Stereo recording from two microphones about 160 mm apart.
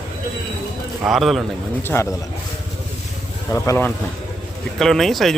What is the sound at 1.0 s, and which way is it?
Speech, centre (ahead or behind).